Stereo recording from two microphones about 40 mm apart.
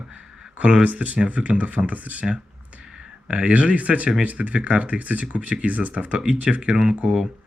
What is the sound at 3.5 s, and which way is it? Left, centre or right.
Speech, right.